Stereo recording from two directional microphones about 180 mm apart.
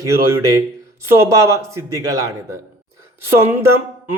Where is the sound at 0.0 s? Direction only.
15° right (ahead or behind).